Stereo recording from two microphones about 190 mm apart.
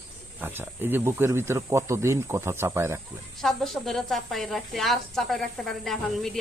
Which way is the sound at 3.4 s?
Centre (ahead or behind).